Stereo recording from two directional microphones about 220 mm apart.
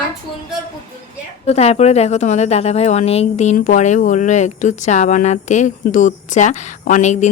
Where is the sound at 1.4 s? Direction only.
30° left (ahead or behind).